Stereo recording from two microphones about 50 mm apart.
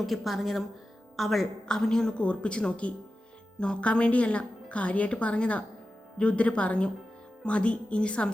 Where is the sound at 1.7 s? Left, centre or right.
Centre.